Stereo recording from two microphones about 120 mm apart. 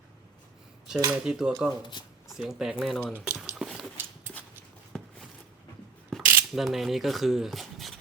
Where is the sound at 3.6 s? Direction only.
Centre (ahead or behind).